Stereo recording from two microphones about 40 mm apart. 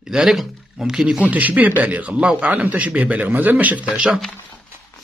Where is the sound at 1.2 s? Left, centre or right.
Right.